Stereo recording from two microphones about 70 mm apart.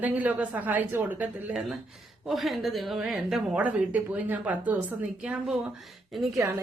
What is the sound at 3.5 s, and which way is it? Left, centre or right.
A woman's voice, right.